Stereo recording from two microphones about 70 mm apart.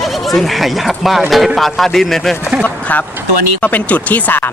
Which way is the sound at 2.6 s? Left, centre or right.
Left.